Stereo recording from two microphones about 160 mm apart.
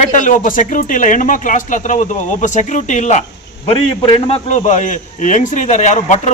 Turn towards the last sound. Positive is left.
turn(degrees=45)  # may be behind; listen again after turning